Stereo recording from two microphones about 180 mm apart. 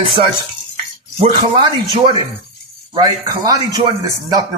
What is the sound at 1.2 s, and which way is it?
Speech, 30° right (ahead or behind).